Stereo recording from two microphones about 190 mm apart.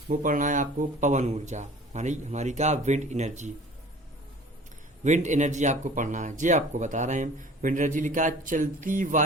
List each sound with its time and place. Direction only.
0.1 s speech: 45° right (ahead or behind)
5.0 s speech: 40° right (ahead or behind)